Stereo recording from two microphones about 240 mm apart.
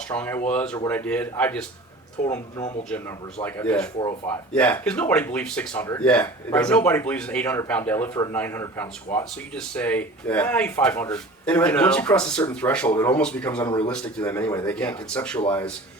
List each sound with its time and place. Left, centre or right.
0.1 s speech: centre